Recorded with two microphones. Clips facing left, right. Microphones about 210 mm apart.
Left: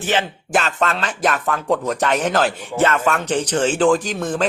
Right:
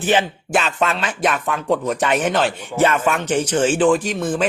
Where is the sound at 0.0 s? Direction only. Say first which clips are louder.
Right 3 dB; 15° right (ahead or behind).